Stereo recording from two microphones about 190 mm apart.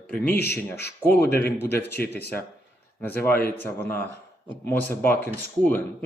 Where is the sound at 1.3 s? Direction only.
55° left (ahead or behind).